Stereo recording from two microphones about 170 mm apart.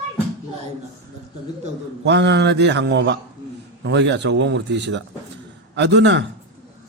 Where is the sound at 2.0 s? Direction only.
90° right.